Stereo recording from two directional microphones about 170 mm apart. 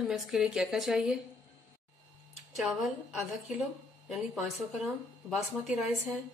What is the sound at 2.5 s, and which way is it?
Speech, centre (ahead or behind).